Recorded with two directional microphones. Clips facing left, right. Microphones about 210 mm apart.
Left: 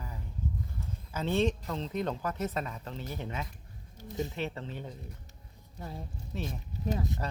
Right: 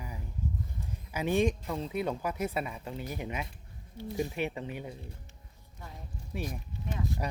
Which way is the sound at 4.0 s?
45° left (ahead or behind).